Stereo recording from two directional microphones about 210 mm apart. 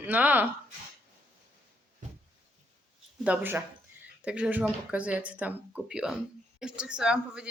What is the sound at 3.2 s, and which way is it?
A woman's voice, 10° right (ahead or behind).